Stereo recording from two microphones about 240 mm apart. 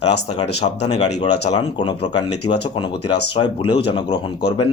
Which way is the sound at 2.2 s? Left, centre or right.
Left.